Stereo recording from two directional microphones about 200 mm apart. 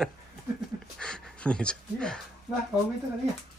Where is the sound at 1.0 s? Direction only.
5° left (ahead or behind).